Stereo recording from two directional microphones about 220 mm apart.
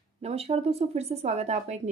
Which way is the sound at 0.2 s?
25° right (ahead or behind).